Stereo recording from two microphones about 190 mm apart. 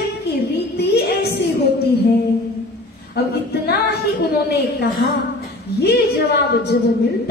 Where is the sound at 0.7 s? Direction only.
60° left (ahead or behind).